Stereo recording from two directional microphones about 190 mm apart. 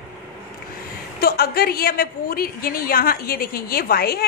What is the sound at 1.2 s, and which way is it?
A woman's voice, 55° left (ahead or behind).